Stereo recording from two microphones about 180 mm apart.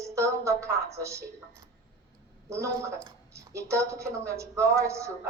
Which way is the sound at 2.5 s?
15° right (ahead or behind).